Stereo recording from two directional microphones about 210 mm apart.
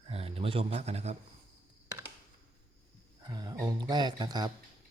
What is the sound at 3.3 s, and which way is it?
Speech, 20° right (ahead or behind).